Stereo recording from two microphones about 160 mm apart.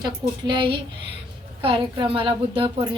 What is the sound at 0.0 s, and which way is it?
A woman's voice, 30° right (ahead or behind).